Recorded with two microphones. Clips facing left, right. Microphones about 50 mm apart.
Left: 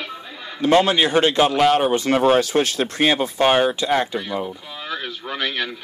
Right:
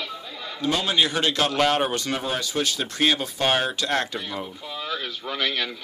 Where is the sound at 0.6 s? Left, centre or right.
Left.